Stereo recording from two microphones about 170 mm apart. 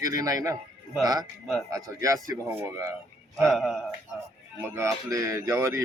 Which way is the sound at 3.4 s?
Centre (ahead or behind).